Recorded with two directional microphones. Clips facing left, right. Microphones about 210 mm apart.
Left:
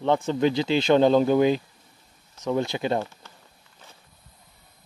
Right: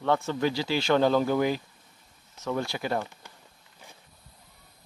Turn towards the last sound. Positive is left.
turn(degrees=-15)  # may be behind; listen again after turning